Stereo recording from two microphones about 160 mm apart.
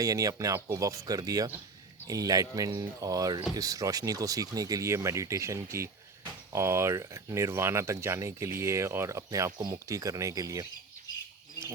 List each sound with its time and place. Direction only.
0.0 s speech: 20° right (ahead or behind)